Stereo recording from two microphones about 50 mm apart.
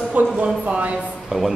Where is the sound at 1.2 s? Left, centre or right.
Centre.